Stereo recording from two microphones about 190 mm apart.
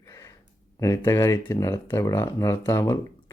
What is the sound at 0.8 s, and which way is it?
Speech, 15° left (ahead or behind).